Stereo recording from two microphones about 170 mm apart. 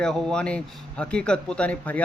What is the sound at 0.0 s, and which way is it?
A man's voice, 5° left (ahead or behind).